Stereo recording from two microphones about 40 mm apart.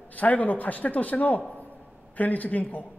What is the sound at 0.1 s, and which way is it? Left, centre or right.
A man's voice, left.